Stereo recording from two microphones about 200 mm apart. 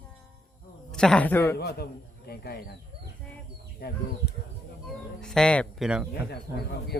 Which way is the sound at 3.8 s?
50° left (ahead or behind).